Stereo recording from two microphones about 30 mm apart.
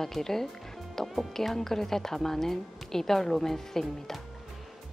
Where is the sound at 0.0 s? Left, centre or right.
Centre.